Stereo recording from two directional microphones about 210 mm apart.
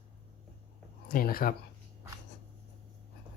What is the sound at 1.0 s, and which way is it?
Speech, 45° left (ahead or behind).